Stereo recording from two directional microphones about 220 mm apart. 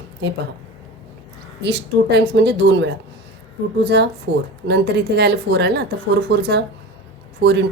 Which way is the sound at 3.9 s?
50° right (ahead or behind).